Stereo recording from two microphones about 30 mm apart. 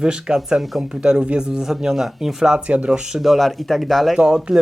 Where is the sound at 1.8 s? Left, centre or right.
Centre.